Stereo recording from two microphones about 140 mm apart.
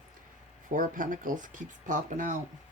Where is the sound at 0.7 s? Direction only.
75° right (ahead or behind).